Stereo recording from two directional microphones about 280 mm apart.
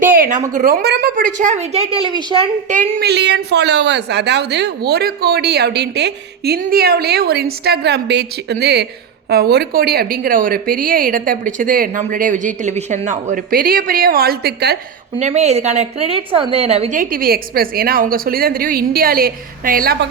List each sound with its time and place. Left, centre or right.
0.2 s a woman's voice: right
2.9 s a woman's voice: right
15.2 s a woman's voice: right